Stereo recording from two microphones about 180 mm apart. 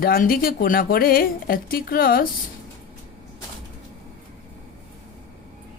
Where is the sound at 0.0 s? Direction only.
55° left (ahead or behind).